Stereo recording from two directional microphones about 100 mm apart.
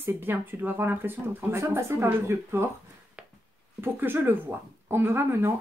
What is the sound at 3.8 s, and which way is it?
Speech, 20° right (ahead or behind).